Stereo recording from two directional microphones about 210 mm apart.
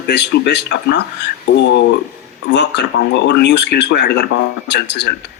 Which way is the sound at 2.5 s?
55° left (ahead or behind).